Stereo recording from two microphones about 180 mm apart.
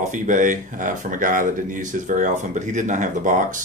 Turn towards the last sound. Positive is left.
turn(degrees=-45)  # may be behind; listen again after turning